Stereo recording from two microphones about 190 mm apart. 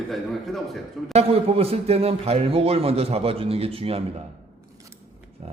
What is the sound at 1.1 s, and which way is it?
A man's voice, 30° right (ahead or behind).